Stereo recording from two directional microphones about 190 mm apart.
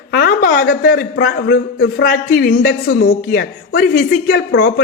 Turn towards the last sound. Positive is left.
turn(degrees=55)  # may be behind; listen again after turning